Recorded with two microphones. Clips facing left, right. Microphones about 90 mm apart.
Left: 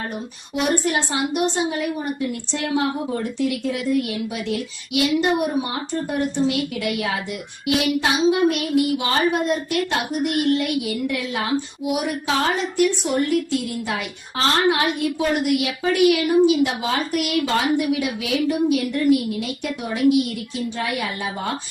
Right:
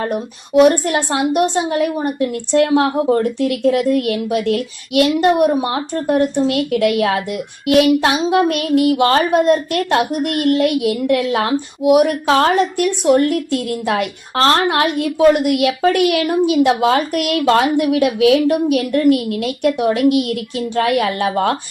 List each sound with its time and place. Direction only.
0.0 s a woman's voice: 55° right (ahead or behind)